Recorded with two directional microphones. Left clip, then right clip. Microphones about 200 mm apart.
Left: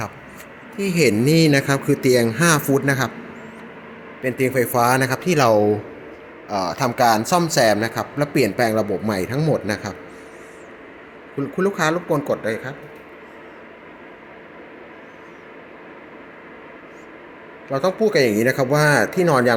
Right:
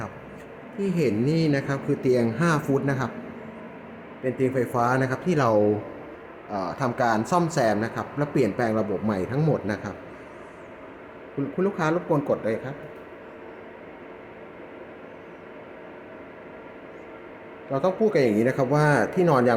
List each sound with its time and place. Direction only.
0.8 s a man's voice: 15° left (ahead or behind)
4.2 s a man's voice: 10° left (ahead or behind)
11.5 s speech: 5° left (ahead or behind)
17.7 s speech: 5° left (ahead or behind)